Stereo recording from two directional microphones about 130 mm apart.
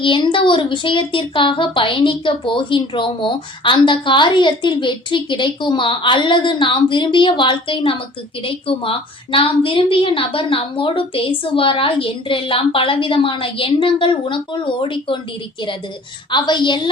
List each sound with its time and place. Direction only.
0.0 s a woman's voice: 40° left (ahead or behind)
16.3 s a woman's voice: 35° left (ahead or behind)